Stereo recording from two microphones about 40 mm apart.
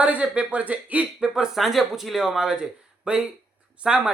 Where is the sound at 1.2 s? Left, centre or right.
Centre.